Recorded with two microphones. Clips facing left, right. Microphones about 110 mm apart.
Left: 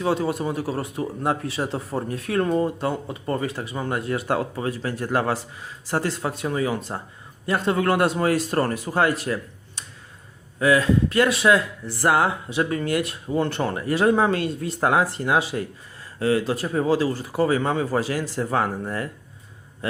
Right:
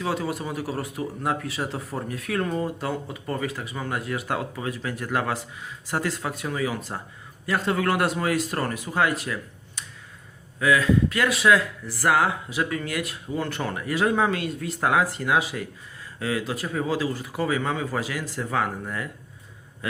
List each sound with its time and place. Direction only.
0.0 s speech: 30° left (ahead or behind)